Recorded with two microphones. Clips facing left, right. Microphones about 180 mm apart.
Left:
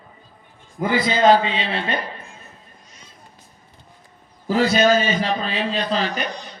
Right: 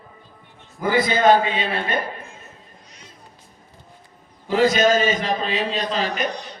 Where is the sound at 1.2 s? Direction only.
25° left (ahead or behind).